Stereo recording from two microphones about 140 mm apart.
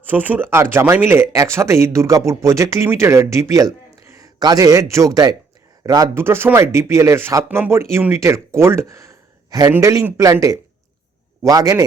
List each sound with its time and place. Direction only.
0.1 s speech: 15° right (ahead or behind)